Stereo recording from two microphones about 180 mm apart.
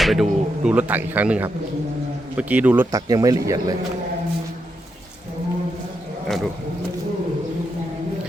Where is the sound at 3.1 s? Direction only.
20° right (ahead or behind).